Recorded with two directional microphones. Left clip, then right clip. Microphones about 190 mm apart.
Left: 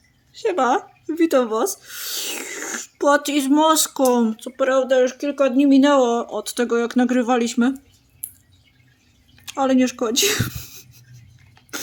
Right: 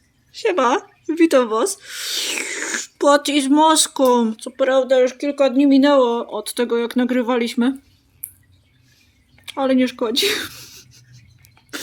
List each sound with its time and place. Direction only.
0.3 s speech: 10° left (ahead or behind)
9.5 s speech: 10° left (ahead or behind)